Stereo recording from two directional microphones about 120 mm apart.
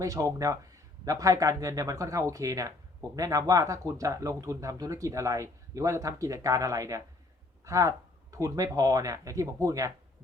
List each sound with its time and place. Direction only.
0.0 s a man's voice: 30° right (ahead or behind)